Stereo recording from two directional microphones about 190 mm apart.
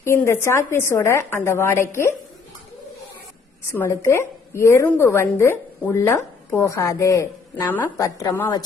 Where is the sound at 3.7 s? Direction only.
15° left (ahead or behind).